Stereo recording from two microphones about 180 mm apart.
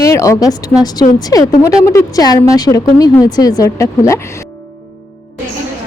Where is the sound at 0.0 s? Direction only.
15° left (ahead or behind).